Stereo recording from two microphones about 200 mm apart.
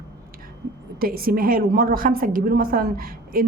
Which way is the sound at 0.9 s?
50° right (ahead or behind).